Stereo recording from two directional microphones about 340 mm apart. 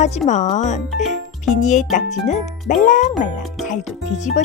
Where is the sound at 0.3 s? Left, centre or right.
Left.